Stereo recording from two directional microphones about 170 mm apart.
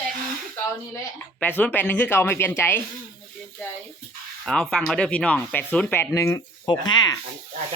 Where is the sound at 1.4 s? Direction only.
10° left (ahead or behind).